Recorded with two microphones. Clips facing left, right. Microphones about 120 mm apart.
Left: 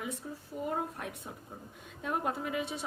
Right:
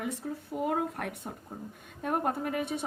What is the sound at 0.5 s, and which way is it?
Speech, 75° right (ahead or behind).